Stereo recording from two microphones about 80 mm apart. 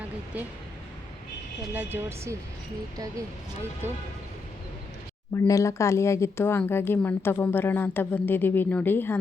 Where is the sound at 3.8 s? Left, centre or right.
Right.